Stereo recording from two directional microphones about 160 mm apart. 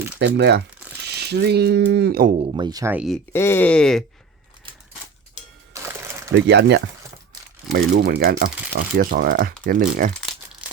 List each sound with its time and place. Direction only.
0.2 s speech: 90° right
2.3 s speech: 35° right (ahead or behind)
2.9 s speech: 5° right (ahead or behind)
3.3 s speech: 15° left (ahead or behind)
6.5 s speech: 90° right; by 10.1 s 60° right (ahead or behind)
10.6 s crumpling: 10° right (ahead or behind)